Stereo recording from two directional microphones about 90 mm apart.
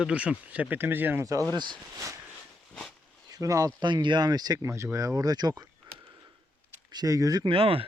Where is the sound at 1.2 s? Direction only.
35° right (ahead or behind).